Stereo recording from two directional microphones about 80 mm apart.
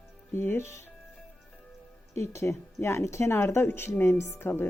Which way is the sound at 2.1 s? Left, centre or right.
Left.